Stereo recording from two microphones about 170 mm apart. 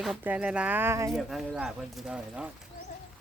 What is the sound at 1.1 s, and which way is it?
Speech, centre (ahead or behind).